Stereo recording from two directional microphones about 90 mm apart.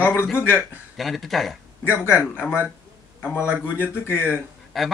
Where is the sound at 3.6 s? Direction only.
25° left (ahead or behind).